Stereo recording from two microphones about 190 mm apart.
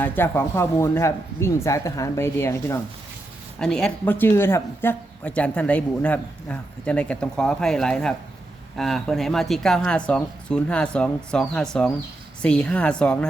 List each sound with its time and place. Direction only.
0.0 s speech: 10° left (ahead or behind)